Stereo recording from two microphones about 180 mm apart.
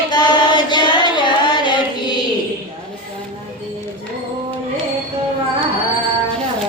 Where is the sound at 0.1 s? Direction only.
25° left (ahead or behind).